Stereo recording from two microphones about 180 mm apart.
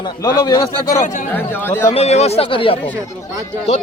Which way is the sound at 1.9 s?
35° left (ahead or behind).